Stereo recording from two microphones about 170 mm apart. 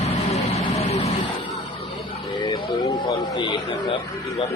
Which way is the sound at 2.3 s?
25° left (ahead or behind).